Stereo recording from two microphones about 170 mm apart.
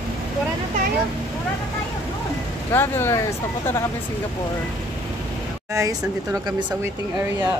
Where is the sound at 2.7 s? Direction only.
15° left (ahead or behind).